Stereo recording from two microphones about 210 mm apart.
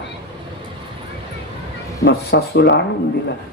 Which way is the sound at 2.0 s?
55° left (ahead or behind).